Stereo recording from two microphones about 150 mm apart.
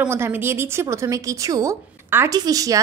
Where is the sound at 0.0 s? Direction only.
15° right (ahead or behind).